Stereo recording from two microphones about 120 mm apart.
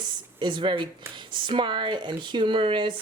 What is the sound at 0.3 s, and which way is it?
Speech, 40° right (ahead or behind).